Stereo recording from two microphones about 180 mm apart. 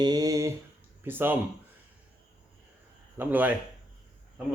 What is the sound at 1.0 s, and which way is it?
Speech, 10° right (ahead or behind).